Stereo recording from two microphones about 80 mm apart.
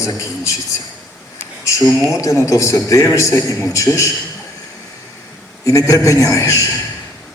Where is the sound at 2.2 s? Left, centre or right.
Left.